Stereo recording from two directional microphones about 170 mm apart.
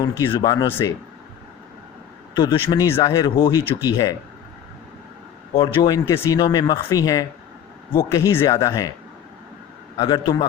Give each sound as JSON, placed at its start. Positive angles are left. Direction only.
{"t": 0.3, "sound": "speech", "side_deg": 25}
{"t": 2.3, "sound": "speech", "side_deg": 25}
{"t": 5.5, "sound": "speech", "side_deg": 25}
{"t": 10.0, "sound": "speech", "side_deg": 25}